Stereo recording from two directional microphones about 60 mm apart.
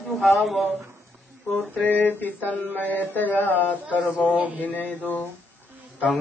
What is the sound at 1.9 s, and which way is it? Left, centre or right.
Speech, left.